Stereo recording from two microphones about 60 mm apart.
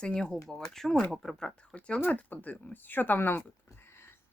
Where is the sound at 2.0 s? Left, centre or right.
Left.